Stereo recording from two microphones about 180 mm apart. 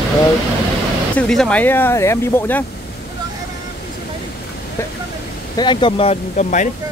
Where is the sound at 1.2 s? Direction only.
5° left (ahead or behind).